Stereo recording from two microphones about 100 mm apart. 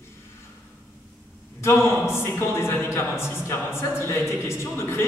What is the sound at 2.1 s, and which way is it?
Speech, 25° left (ahead or behind).